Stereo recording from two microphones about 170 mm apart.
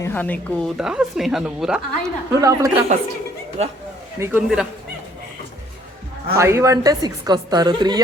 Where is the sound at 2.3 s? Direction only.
20° right (ahead or behind).